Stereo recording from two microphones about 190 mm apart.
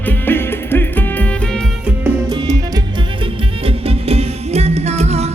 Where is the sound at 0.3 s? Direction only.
10° left (ahead or behind).